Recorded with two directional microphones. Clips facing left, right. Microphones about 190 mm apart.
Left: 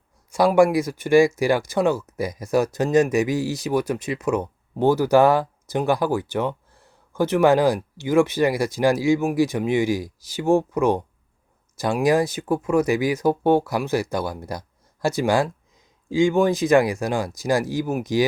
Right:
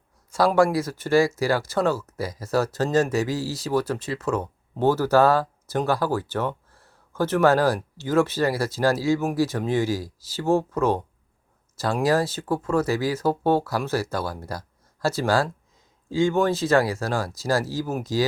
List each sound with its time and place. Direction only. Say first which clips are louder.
0.3 s speech: left 3 dB; 15° left (ahead or behind)